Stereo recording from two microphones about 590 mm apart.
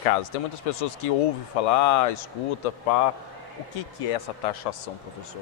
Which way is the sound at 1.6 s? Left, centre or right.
Left.